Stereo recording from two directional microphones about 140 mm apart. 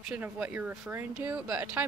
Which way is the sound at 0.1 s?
10° right (ahead or behind).